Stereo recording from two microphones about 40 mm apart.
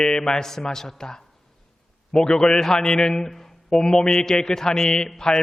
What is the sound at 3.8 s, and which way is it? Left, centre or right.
Speech, centre.